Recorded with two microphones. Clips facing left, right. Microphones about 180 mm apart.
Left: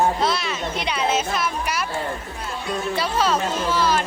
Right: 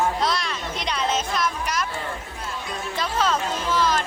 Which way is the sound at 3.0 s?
10° left (ahead or behind).